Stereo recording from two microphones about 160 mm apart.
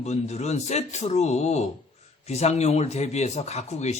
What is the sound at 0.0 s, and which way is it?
Speech, 45° left (ahead or behind).